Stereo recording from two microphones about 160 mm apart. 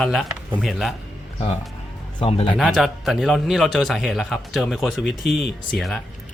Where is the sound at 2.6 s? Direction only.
5° right (ahead or behind).